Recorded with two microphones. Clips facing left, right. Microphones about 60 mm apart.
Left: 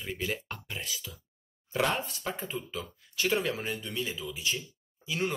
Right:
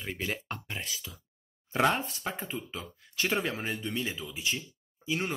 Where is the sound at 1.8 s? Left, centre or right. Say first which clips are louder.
Right 3 dB; right.